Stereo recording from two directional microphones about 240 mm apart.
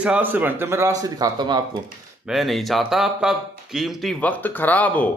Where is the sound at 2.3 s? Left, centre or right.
Centre.